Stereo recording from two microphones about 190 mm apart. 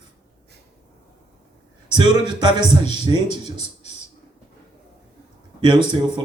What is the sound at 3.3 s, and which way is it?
Speech, 35° left (ahead or behind).